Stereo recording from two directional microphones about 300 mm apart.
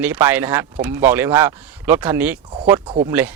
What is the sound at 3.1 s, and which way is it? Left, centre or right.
Speech, centre.